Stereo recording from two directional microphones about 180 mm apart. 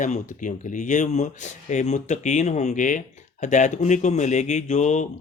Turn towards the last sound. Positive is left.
turn(degrees=40)  # may be behind; listen again after turning